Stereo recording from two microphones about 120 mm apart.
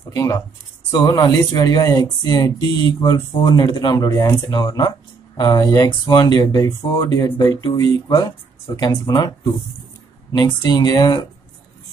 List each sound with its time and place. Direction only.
0.1 s speech: 30° left (ahead or behind)
7.2 s speech: 20° left (ahead or behind)